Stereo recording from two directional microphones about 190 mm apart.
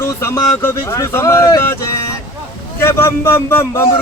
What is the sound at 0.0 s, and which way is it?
Speech, 15° left (ahead or behind).